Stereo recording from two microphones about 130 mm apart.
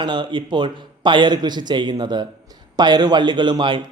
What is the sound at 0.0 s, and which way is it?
A man's voice, 35° right (ahead or behind).